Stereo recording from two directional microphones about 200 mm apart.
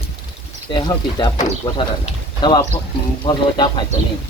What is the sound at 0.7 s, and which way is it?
Speech, 20° left (ahead or behind).